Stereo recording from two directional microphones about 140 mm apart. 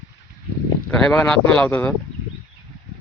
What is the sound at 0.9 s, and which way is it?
A man's voice, 5° left (ahead or behind).